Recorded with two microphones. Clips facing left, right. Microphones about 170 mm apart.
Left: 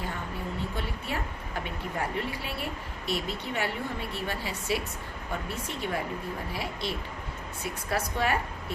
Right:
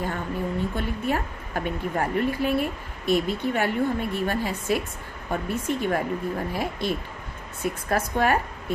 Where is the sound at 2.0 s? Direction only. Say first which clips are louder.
Right 8 dB; 50° right (ahead or behind).